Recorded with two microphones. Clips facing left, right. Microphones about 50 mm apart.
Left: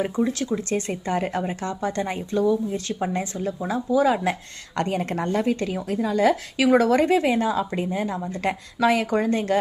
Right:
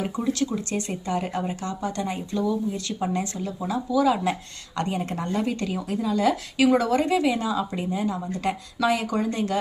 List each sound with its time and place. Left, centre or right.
0.3 s speech: left